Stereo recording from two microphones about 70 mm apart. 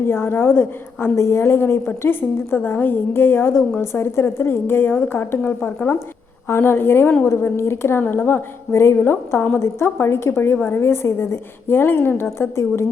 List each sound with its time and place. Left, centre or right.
0.0 s a woman's voice: left